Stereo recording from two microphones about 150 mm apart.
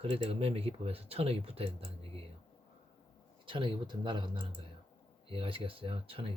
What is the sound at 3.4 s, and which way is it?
Speech, 35° right (ahead or behind).